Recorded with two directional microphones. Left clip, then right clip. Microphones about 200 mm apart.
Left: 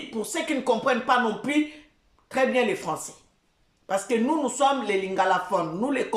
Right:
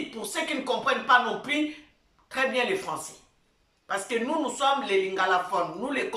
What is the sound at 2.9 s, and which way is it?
A woman's voice, 35° left (ahead or behind).